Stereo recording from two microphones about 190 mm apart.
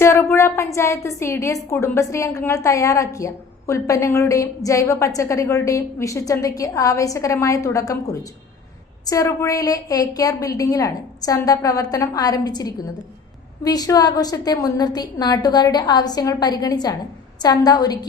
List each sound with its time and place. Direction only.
0.0 s a woman's voice: 15° left (ahead or behind)